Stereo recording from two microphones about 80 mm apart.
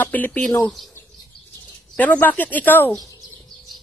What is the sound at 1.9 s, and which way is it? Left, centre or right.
A woman's voice, centre.